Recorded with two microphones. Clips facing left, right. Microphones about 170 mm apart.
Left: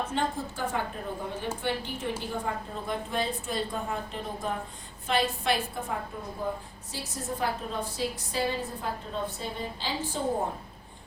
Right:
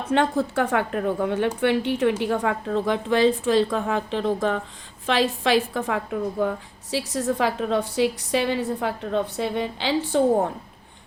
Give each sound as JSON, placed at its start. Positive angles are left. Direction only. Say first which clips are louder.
{"t": 0.1, "sound": "a woman's voice", "louder": "right 10 dB", "side_deg": -75}